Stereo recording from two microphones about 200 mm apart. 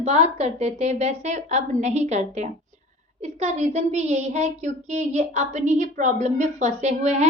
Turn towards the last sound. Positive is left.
turn(degrees=-35)  # may be behind; listen again after turning